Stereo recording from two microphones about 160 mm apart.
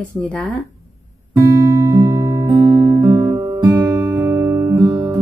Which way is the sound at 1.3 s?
20° right (ahead or behind).